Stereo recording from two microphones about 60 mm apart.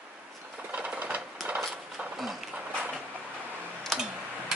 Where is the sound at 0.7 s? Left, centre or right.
Right.